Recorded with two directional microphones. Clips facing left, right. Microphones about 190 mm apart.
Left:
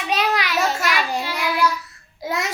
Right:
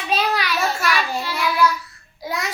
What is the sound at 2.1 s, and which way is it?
Babbling, 20° left (ahead or behind).